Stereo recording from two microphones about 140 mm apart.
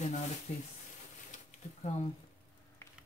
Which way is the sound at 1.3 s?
50° left (ahead or behind).